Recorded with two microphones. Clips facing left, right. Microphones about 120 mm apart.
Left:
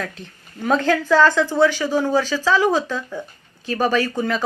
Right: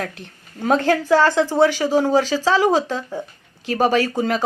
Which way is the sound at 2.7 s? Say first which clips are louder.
Right 2 dB; 20° right (ahead or behind).